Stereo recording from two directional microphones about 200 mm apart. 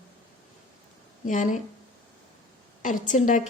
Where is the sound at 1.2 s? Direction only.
40° left (ahead or behind).